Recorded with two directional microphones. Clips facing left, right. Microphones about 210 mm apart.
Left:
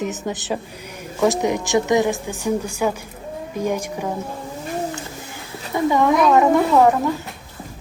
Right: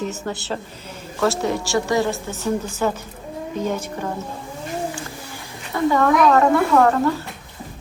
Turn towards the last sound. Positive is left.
turn(degrees=15)  # may be behind; listen again after turning